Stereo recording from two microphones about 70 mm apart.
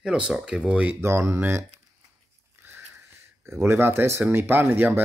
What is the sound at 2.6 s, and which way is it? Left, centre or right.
Dog, right.